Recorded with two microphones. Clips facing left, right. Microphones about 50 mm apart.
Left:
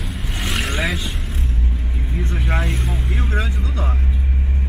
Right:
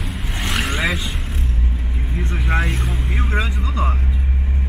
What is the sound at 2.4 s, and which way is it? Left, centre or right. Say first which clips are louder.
Vehicle: right 3 dB; centre.